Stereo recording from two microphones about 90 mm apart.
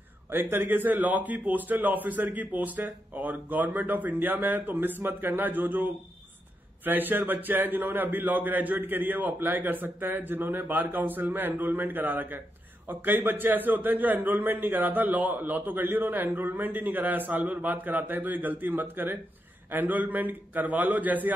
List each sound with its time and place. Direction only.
0.3 s a man's voice: 25° right (ahead or behind)